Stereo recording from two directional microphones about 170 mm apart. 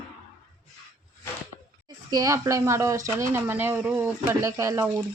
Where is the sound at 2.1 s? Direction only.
20° right (ahead or behind).